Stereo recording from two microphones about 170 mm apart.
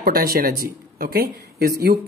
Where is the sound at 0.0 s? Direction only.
60° right (ahead or behind).